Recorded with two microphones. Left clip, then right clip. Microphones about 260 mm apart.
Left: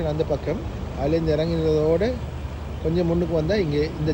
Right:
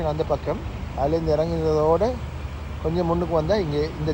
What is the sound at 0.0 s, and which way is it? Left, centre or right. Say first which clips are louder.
Speech: even; right.